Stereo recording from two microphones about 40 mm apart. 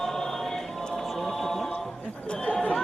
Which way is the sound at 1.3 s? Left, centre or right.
Centre.